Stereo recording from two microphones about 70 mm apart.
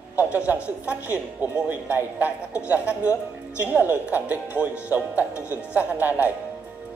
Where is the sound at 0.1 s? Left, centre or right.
Right.